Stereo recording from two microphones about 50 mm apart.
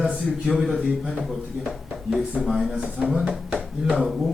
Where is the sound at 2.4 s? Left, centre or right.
Centre.